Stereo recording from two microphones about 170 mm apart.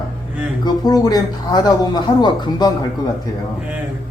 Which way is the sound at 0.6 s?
25° left (ahead or behind).